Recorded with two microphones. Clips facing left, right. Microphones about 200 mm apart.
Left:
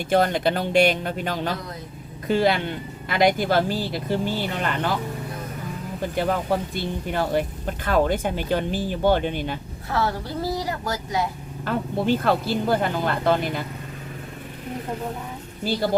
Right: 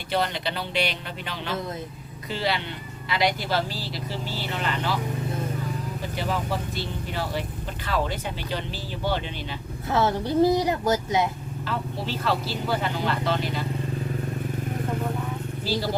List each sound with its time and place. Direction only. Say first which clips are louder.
0.1 s speech: left 7 dB; 50° left (ahead or behind)
6.0 s speech: left 7 dB; 50° left (ahead or behind)
9.9 s a woman's voice: right 3 dB; 20° right (ahead or behind)
11.6 s speech: left 7 dB; 50° left (ahead or behind)
15.7 s speech: left 1 dB; 55° left (ahead or behind)